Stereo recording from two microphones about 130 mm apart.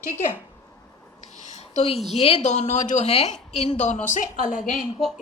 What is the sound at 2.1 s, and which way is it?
A woman's voice, 50° left (ahead or behind).